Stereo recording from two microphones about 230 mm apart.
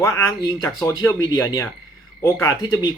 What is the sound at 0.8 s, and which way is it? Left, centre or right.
Speech, centre.